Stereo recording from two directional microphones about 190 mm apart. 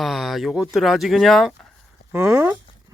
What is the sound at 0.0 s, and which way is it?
Speech, centre (ahead or behind).